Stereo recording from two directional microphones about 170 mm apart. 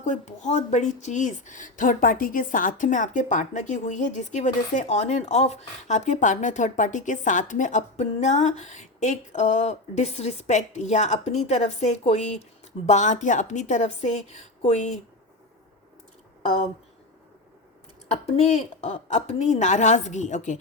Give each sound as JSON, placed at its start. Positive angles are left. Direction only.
{"t": 0.0, "sound": "a woman's voice", "side_deg": 45}
{"t": 18.1, "sound": "a woman's voice", "side_deg": 40}